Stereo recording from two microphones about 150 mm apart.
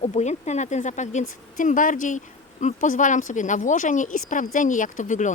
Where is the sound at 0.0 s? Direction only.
50° left (ahead or behind).